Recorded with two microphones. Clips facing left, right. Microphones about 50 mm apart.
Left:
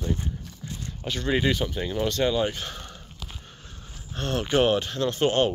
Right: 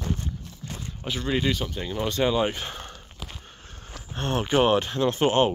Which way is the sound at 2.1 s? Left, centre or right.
Centre.